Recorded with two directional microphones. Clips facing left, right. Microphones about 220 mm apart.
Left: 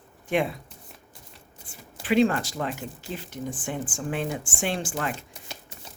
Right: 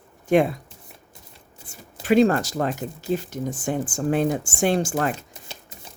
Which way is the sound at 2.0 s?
40° right (ahead or behind).